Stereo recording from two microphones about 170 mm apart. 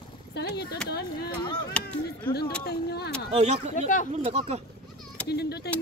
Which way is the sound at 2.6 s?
70° left (ahead or behind).